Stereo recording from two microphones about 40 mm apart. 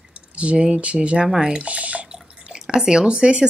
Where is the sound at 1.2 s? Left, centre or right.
Centre.